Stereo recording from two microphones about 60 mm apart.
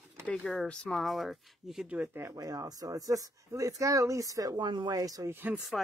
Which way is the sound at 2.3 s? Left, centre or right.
Right.